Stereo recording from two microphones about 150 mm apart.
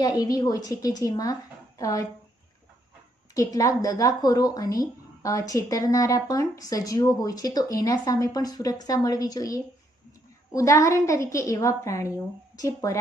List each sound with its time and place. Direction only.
0.0 s speech: 25° left (ahead or behind)
3.3 s speech: 25° left (ahead or behind)